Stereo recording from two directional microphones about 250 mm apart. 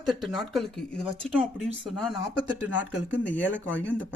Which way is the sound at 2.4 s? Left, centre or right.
Left.